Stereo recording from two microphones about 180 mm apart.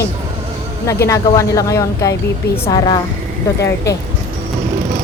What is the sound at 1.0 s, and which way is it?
A woman's voice, 15° left (ahead or behind).